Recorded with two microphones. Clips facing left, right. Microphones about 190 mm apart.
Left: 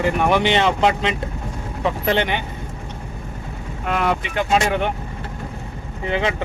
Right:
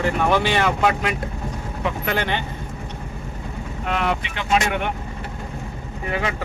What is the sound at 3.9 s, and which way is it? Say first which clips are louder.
Speech: left 3 dB; 45° left (ahead or behind).